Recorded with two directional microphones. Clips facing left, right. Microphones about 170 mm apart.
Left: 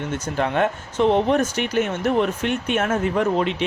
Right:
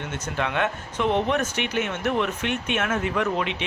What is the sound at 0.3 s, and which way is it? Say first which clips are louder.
Speech: left 4 dB; 40° left (ahead or behind).